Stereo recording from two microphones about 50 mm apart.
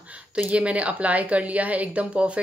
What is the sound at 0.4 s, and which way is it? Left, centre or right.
Speech, right.